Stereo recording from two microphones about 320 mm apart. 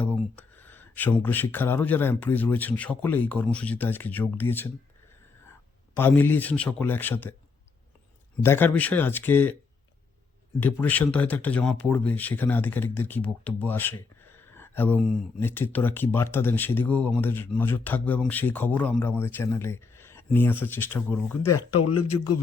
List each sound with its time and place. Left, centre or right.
0.0 s speech: centre
6.0 s speech: centre
8.4 s speech: centre
10.6 s speech: centre
21.5 s speech: left